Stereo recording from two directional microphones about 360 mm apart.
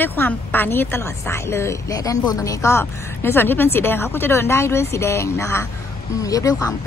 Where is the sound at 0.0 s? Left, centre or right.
Centre.